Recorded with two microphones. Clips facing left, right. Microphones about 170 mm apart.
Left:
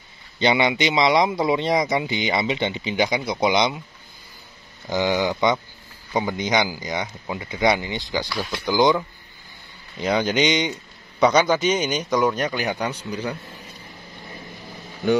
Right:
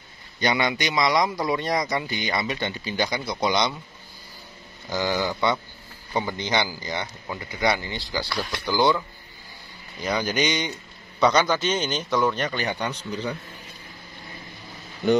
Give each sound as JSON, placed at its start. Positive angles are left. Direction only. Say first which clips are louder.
{"t": 0.4, "sound": "speech", "louder": "left 4 dB", "side_deg": 25}
{"t": 4.8, "sound": "speech", "louder": "left 4 dB", "side_deg": 20}
{"t": 8.3, "sound": "speech", "louder": "left 2 dB", "side_deg": 0}
{"t": 8.6, "sound": "a man's voice", "louder": "left 3 dB", "side_deg": 15}